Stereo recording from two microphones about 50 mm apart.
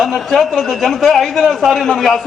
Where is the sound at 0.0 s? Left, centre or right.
Centre.